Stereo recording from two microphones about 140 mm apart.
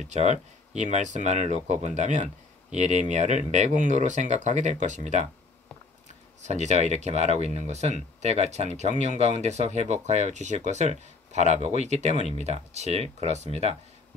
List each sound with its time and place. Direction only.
0.1 s speech: 55° right (ahead or behind)
6.4 s speech: 55° right (ahead or behind)